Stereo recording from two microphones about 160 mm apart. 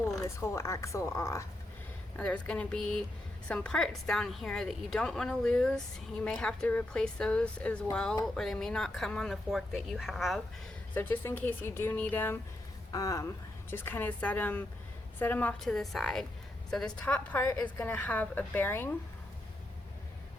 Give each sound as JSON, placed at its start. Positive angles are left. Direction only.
{"t": 0.2, "sound": "a woman's voice", "side_deg": 15}
{"t": 2.1, "sound": "a woman's voice", "side_deg": 5}
{"t": 10.9, "sound": "a woman's voice", "side_deg": 10}